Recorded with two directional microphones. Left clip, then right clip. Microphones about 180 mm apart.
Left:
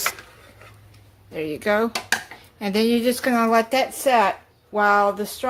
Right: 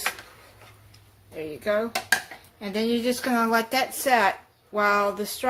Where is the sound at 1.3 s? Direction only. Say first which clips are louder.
Left 4 dB; 45° left (ahead or behind).